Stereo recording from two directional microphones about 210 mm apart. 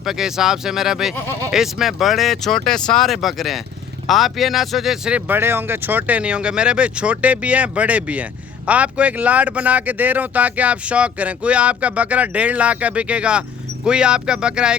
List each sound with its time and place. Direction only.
0.0 s speech: centre (ahead or behind)